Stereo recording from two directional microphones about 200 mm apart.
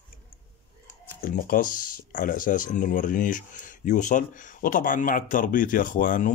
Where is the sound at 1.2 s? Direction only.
45° left (ahead or behind).